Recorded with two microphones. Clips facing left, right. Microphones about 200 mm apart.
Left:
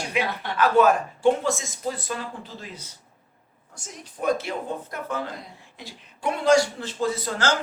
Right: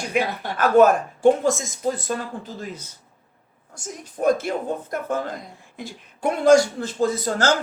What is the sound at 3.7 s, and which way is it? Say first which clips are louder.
A woman's voice: right 7 dB; 45° right (ahead or behind).